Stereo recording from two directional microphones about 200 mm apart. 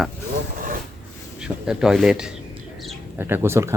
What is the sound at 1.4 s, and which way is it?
Speech, 5° right (ahead or behind).